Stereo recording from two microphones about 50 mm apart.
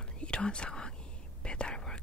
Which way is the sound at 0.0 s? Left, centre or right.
Centre.